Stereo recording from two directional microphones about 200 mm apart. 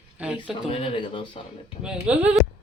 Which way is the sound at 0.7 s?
30° left (ahead or behind).